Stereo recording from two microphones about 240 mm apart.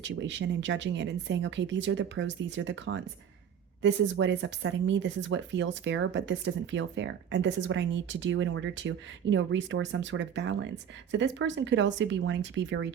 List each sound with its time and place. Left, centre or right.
0.0 s speech: right